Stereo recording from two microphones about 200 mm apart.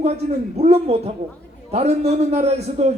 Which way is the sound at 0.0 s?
30° right (ahead or behind).